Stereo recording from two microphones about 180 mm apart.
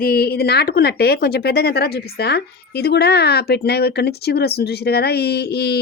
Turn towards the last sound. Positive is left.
turn(degrees=65)  # may be behind; listen again after turning